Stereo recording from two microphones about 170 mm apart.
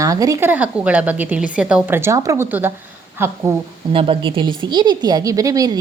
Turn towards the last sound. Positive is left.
turn(degrees=-20)  # may be behind; listen again after turning